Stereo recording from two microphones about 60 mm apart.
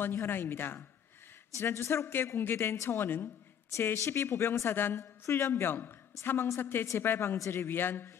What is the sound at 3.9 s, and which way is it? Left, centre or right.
A woman's voice, left.